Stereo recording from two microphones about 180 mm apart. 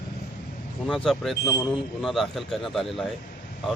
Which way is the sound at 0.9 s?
Centre (ahead or behind).